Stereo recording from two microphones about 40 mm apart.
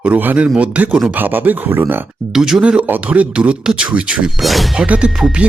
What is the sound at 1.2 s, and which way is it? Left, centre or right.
Speech, right.